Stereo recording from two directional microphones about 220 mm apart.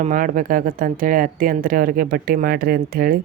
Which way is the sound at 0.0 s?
40° right (ahead or behind).